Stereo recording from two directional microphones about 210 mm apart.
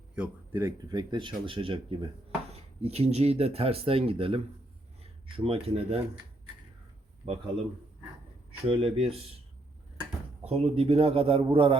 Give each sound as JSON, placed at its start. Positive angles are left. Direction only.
{"t": 0.2, "sound": "speech", "side_deg": -10}
{"t": 7.2, "sound": "speech", "side_deg": -30}
{"t": 8.6, "sound": "speech", "side_deg": -25}
{"t": 10.4, "sound": "speech", "side_deg": -30}